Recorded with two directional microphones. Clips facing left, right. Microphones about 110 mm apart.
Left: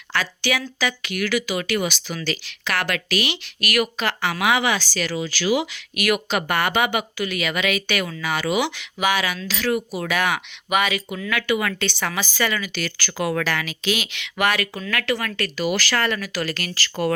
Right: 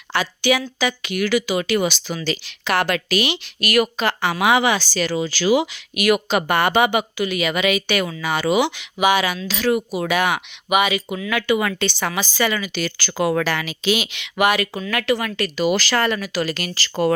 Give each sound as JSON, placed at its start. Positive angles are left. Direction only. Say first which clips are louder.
{"t": 0.1, "sound": "speech", "louder": "right 5 dB", "side_deg": -20}
{"t": 8.2, "sound": "speech", "louder": "right 4 dB", "side_deg": -25}